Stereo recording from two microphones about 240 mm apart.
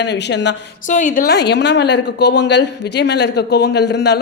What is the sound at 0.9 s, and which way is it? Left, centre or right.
A woman's voice, left.